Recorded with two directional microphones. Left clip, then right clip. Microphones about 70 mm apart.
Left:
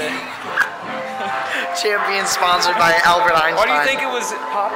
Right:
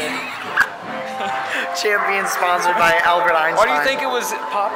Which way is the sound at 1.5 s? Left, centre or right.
Centre.